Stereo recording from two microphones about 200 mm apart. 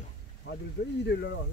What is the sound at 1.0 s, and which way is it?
Speech, 60° left (ahead or behind).